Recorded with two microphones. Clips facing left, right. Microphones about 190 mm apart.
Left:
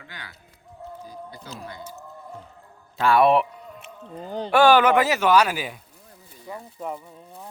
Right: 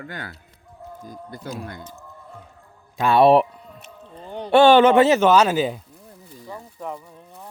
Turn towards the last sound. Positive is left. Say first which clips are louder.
# even
turn(degrees=10)  # may be behind; listen again after turning